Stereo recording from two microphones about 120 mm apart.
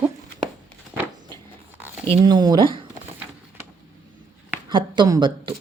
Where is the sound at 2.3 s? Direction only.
35° right (ahead or behind).